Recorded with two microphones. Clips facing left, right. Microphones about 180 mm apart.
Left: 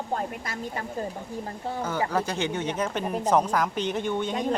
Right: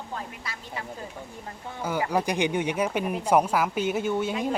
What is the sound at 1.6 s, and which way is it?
Speech, 35° left (ahead or behind).